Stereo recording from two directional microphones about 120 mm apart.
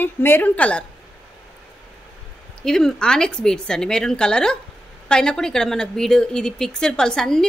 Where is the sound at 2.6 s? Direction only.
5° left (ahead or behind).